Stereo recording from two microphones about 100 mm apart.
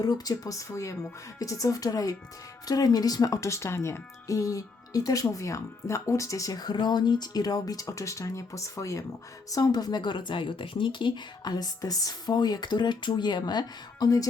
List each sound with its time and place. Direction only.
0.0 s a woman's voice: 40° left (ahead or behind)